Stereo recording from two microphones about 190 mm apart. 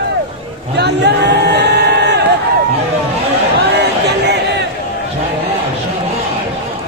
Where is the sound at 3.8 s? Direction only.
60° right (ahead or behind).